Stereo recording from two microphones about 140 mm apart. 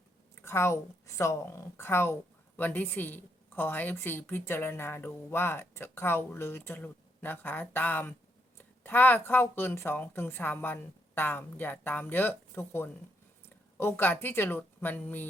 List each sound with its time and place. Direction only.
0.4 s a woman's voice: 20° left (ahead or behind)